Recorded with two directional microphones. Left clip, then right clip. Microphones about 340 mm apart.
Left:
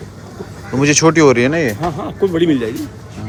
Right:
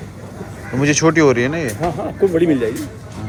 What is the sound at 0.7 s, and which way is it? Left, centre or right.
Speech, centre.